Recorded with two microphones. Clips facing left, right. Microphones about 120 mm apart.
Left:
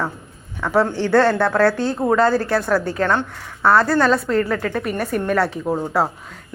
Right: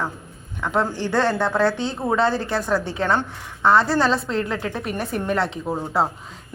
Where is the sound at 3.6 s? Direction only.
20° right (ahead or behind).